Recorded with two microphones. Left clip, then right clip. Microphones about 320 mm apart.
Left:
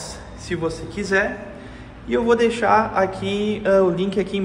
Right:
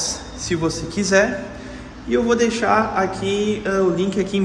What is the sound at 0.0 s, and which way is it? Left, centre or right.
A man's voice, centre.